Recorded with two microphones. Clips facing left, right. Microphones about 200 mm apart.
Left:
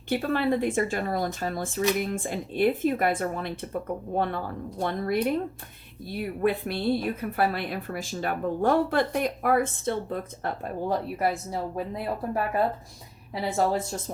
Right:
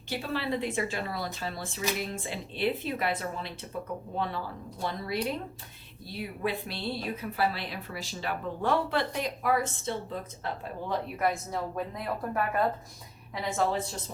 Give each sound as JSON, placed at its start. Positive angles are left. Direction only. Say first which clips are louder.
{"t": 0.1, "sound": "speech", "louder": "left 7 dB", "side_deg": 55}
{"t": 11.2, "sound": "a woman's voice", "louder": "left 2 dB", "side_deg": 30}